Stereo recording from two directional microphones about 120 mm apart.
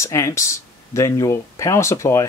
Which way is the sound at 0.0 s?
25° left (ahead or behind).